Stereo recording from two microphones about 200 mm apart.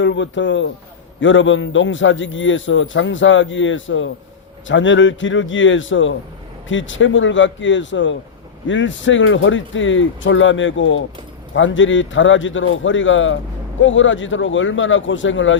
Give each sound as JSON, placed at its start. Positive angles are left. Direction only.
{"t": 0.0, "sound": "a man's voice", "side_deg": 65}